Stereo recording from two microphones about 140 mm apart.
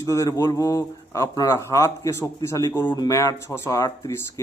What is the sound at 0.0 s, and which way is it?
A man's voice, 25° left (ahead or behind).